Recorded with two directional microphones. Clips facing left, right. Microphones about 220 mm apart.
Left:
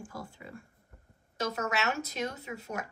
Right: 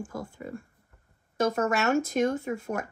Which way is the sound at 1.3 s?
50° right (ahead or behind).